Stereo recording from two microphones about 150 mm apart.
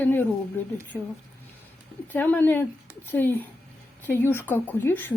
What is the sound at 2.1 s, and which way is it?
Speech, 10° left (ahead or behind).